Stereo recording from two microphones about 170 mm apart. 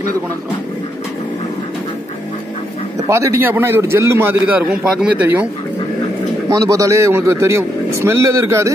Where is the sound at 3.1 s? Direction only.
15° right (ahead or behind).